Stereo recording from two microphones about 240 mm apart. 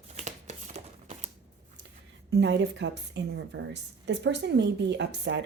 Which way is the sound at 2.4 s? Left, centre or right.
Right.